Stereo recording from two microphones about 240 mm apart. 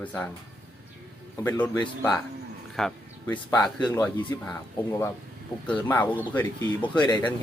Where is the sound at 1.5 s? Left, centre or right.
Centre.